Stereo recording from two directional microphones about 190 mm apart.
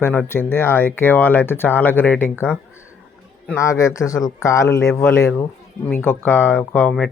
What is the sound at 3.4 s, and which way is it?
Speech, 15° left (ahead or behind).